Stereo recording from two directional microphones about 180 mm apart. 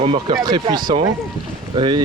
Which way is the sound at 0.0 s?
35° right (ahead or behind).